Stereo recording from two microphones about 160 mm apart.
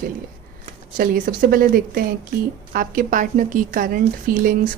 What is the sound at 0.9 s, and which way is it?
Speech, 65° right (ahead or behind).